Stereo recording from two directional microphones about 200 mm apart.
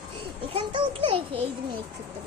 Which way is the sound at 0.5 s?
25° right (ahead or behind).